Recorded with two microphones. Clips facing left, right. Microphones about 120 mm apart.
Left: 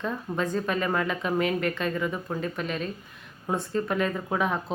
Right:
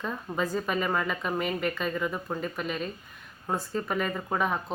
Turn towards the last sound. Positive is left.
turn(degrees=0)  # may be behind; listen again after turning